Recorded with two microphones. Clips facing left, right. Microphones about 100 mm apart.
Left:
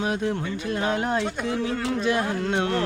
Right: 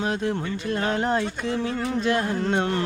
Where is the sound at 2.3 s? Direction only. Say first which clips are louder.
Right 2 dB; 5° right (ahead or behind).